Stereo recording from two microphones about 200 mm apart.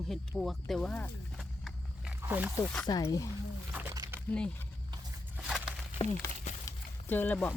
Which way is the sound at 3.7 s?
15° right (ahead or behind).